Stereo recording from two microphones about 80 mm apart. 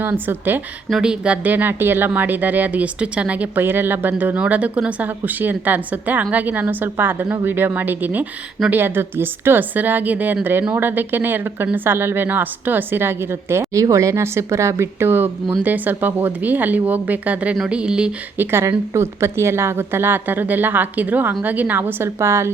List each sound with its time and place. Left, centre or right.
0.0 s speech: right
0.9 s speech: centre
18.3 s speech: right